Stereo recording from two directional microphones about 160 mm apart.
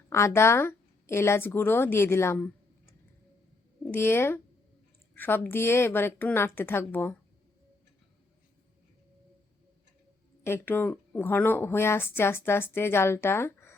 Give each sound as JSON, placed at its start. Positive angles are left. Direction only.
{"t": 0.1, "sound": "a woman's voice", "side_deg": 15}
{"t": 3.9, "sound": "a woman's voice", "side_deg": 15}
{"t": 10.4, "sound": "a woman's voice", "side_deg": 15}